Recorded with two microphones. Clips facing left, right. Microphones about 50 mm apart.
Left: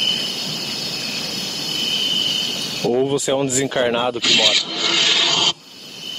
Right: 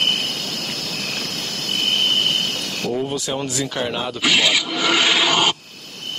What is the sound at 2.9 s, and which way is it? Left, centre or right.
Speech, centre.